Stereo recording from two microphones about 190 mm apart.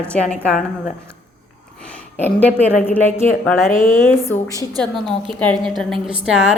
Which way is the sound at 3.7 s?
45° left (ahead or behind).